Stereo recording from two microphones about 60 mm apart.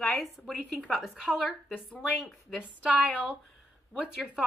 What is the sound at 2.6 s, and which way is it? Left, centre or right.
Speech, centre.